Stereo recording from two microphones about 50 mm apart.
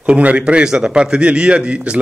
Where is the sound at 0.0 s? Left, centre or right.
Right.